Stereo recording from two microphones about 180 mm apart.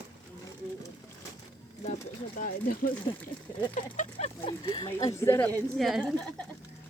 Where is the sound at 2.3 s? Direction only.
50° left (ahead or behind).